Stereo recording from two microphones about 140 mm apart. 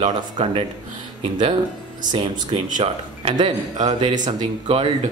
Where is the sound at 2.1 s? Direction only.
40° right (ahead or behind).